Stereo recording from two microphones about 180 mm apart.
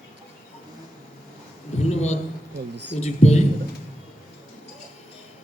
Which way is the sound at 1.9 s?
40° left (ahead or behind).